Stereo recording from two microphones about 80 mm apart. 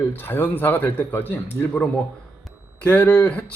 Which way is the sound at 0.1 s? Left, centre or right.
Left.